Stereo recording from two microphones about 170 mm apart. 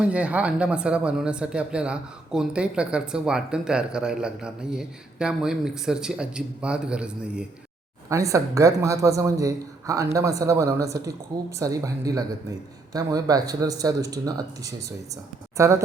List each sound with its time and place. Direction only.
0.0 s speech: 10° right (ahead or behind)
8.1 s a man's voice: 20° right (ahead or behind)